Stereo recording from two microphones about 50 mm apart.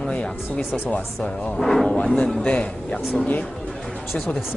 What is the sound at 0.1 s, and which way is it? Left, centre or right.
Speech, left.